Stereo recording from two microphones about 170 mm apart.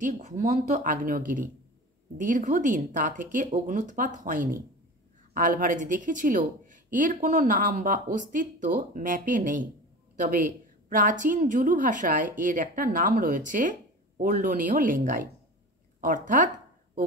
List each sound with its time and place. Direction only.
0.0 s a woman's voice: 45° right (ahead or behind)